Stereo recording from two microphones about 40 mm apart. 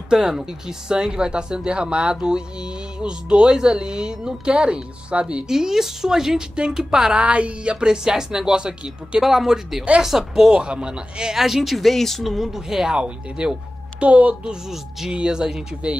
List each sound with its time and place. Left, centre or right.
0.1 s speech: centre
5.5 s a woman's voice: centre
7.2 s speech: right
9.2 s a woman's voice: centre; by 11.3 s right
11.3 s speech: centre
12.2 s a woman's voice: centre
12.9 s speech: right
15.0 s speech: right